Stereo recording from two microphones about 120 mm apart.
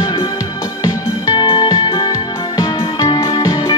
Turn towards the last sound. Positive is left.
turn(degrees=35)  # may be behind; listen again after turning